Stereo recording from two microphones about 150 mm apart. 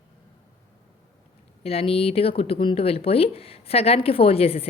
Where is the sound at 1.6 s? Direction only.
40° left (ahead or behind).